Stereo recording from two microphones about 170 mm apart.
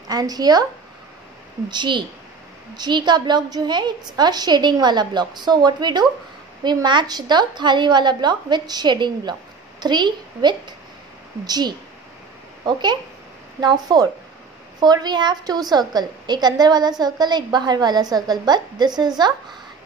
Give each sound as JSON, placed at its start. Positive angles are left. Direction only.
{"t": 0.1, "sound": "a woman's voice", "side_deg": -20}
{"t": 1.7, "sound": "a woman's voice", "side_deg": -25}
{"t": 13.6, "sound": "a woman's voice", "side_deg": -25}